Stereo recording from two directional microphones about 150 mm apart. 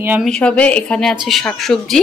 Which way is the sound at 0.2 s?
5° left (ahead or behind).